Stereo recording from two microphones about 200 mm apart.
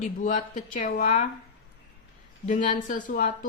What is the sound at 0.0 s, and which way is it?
Speech, 40° left (ahead or behind).